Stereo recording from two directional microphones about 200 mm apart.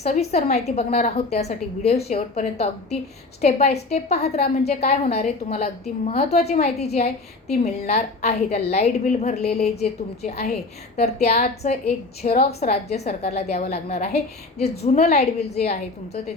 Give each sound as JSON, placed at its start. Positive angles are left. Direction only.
{"t": 0.0, "sound": "a woman's voice", "side_deg": 35}
{"t": 10.9, "sound": "a woman's voice", "side_deg": 30}